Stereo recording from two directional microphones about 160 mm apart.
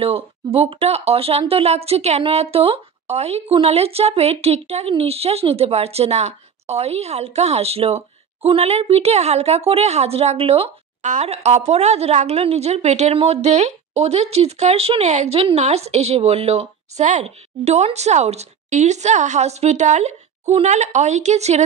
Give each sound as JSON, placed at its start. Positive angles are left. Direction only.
{"t": 0.0, "sound": "speech", "side_deg": -35}